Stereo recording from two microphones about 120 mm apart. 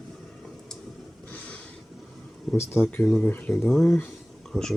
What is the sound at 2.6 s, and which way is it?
Speech, 20° left (ahead or behind).